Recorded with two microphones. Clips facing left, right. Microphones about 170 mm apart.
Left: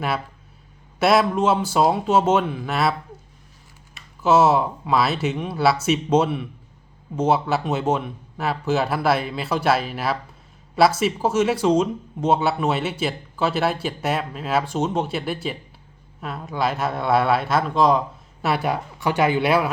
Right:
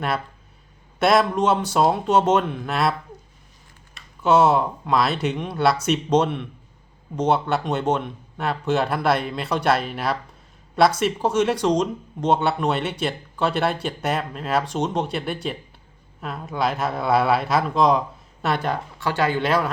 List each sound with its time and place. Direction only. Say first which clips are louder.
0.9 s speech: even; centre (ahead or behind)
3.9 s speech: even; centre (ahead or behind)